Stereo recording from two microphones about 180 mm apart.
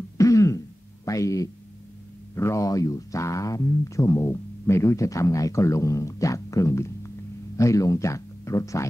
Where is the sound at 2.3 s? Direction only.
15° left (ahead or behind).